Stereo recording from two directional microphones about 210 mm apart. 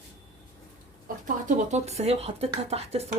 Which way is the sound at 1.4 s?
35° right (ahead or behind).